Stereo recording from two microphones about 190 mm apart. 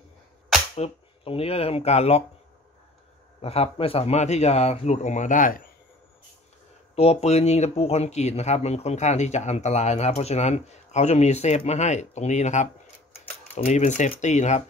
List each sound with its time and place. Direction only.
0.7 s speech: 30° left (ahead or behind)
3.3 s speech: 30° left (ahead or behind)
7.0 s speech: 35° left (ahead or behind)
13.7 s speech: 40° left (ahead or behind)